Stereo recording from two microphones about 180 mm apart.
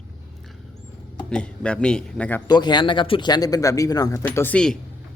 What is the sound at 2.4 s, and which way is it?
Speech, 25° left (ahead or behind).